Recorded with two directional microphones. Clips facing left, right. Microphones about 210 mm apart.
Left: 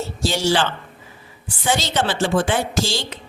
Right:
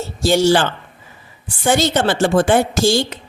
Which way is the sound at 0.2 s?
50° right (ahead or behind).